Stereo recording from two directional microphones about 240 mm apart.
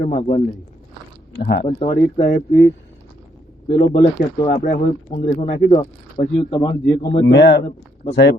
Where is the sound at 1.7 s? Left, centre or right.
Left.